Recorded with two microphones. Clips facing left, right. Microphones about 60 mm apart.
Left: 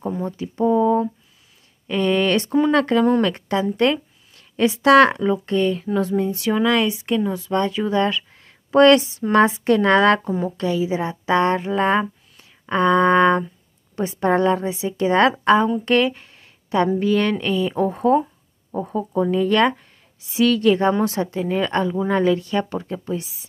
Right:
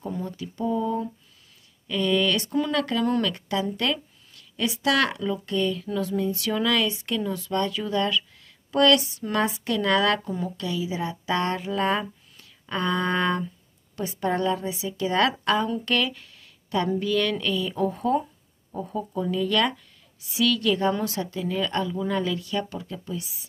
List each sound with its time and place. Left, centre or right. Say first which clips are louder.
0.2 s speech: left 11 dB; left